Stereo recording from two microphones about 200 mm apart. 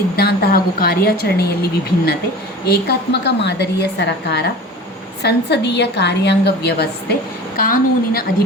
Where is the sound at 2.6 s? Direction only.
55° left (ahead or behind).